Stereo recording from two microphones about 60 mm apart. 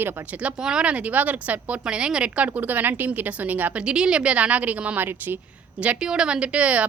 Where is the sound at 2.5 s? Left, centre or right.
Right.